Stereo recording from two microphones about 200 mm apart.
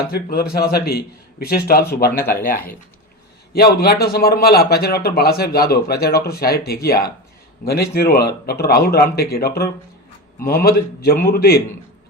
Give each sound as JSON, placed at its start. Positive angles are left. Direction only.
{"t": 0.1, "sound": "a man's voice", "side_deg": 50}